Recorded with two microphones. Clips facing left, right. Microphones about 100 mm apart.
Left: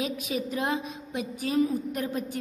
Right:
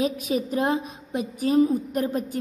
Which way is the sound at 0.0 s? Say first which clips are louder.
Right 6 dB; 35° right (ahead or behind).